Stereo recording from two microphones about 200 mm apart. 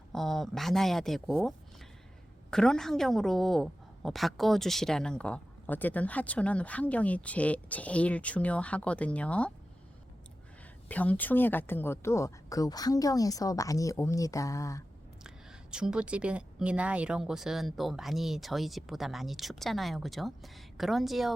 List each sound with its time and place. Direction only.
0.1 s a woman's voice: centre (ahead or behind)
10.8 s a woman's voice: 10° left (ahead or behind)
15.7 s speech: 5° right (ahead or behind)